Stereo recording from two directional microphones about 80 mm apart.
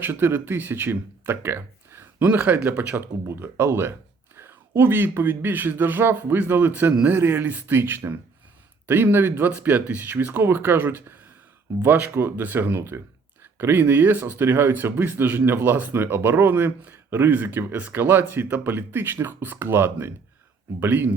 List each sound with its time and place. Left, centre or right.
0.0 s speech: right